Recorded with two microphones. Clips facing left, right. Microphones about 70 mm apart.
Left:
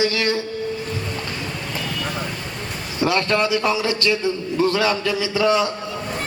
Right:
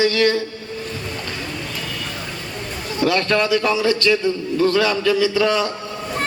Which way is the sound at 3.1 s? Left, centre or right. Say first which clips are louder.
Right 1 dB; left.